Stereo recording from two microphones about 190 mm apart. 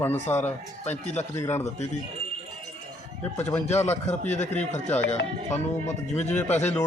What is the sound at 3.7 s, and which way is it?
Speech, 35° left (ahead or behind).